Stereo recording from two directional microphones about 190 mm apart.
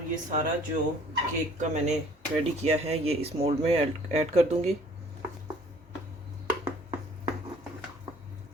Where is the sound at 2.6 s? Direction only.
30° right (ahead or behind).